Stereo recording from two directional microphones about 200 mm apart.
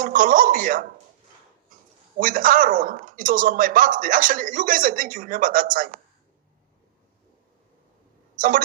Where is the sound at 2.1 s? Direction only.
45° right (ahead or behind).